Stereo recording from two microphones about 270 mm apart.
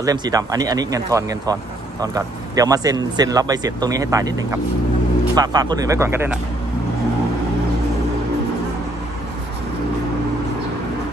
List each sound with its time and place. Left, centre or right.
0.0 s speech: centre